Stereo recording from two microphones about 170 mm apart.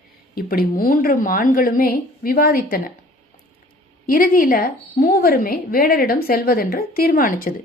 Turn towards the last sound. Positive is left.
turn(degrees=55)  # may be behind; listen again after turning